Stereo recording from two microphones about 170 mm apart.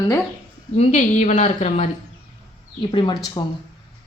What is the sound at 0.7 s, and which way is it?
A woman's voice, 45° left (ahead or behind).